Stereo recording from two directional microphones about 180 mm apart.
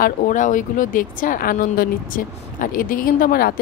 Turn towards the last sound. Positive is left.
turn(degrees=55)  # may be behind; listen again after turning